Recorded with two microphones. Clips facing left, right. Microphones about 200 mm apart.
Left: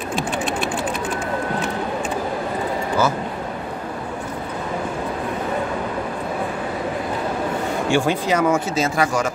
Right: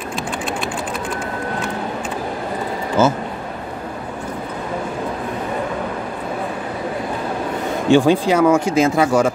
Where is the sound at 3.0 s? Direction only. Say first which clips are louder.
Right 5 dB; 25° right (ahead or behind).